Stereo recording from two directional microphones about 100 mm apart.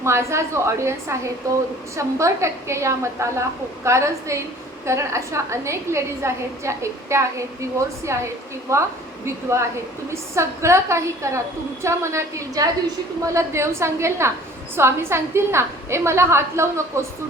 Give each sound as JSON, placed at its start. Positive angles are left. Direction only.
{"t": 0.0, "sound": "a woman's voice", "side_deg": -30}